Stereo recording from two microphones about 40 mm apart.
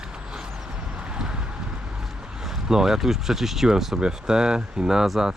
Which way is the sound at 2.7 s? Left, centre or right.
Centre.